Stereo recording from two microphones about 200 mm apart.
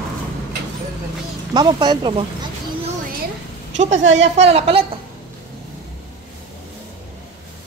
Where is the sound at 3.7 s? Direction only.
35° right (ahead or behind).